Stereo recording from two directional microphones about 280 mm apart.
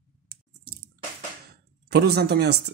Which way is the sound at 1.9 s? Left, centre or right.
Right.